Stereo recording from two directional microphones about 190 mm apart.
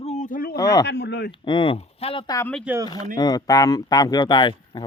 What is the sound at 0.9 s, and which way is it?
Speech, 60° left (ahead or behind).